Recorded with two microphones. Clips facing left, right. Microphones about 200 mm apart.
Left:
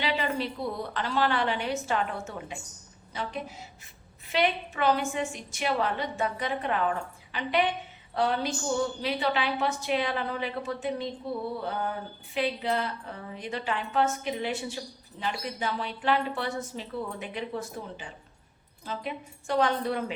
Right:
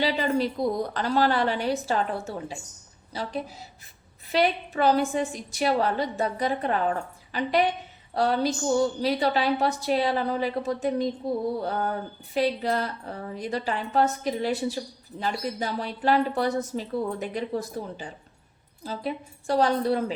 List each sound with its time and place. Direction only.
0.0 s a woman's voice: 40° right (ahead or behind)